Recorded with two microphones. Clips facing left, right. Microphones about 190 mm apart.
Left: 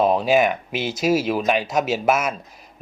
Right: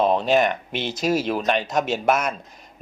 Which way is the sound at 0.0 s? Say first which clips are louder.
Left 1 dB; 5° left (ahead or behind).